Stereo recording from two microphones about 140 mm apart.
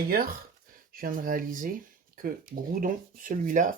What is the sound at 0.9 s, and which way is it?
Speech, 90° right.